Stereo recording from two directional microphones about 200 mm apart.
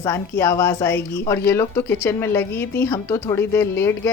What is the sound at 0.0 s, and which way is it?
A woman's voice, 15° left (ahead or behind).